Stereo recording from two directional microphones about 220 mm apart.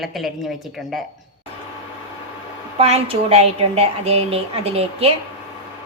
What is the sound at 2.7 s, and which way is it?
A woman's voice, 25° right (ahead or behind).